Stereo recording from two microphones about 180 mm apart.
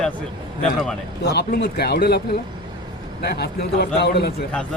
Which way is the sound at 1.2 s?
65° left (ahead or behind).